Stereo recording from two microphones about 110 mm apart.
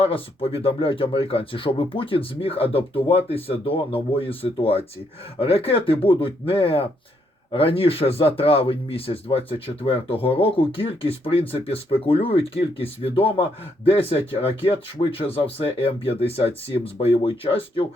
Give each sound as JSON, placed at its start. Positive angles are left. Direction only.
{"t": 0.0, "sound": "speech", "side_deg": 60}